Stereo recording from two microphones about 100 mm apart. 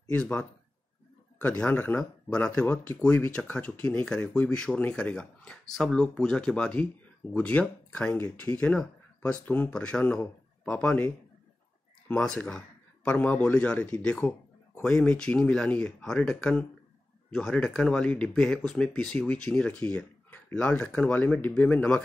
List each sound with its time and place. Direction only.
0.2 s a man's voice: 15° left (ahead or behind)
12.1 s speech: 10° left (ahead or behind)